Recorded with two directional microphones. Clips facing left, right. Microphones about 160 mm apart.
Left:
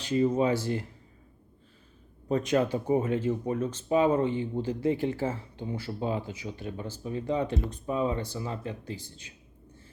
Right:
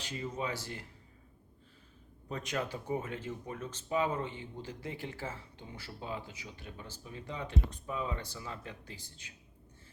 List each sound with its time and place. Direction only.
0.0 s speech: 30° left (ahead or behind)
2.3 s speech: 30° left (ahead or behind)